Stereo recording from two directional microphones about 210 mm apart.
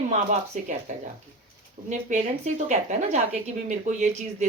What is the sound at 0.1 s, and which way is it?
Speech, 35° right (ahead or behind).